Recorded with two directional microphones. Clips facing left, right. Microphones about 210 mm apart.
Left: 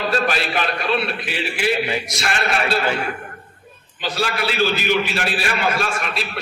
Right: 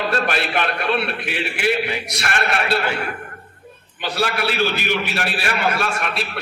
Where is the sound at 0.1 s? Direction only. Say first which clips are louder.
Even; 55° right (ahead or behind).